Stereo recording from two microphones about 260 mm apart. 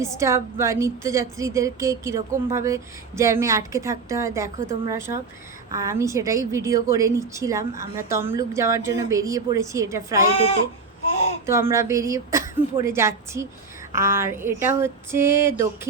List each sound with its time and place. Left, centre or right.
0.0 s speech: centre
10.3 s speech: left
11.4 s speech: centre